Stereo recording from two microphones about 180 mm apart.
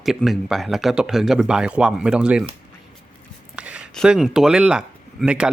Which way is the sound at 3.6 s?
5° right (ahead or behind).